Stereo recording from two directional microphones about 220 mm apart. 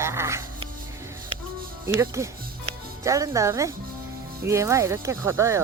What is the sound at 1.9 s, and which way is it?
Speech, 15° right (ahead or behind).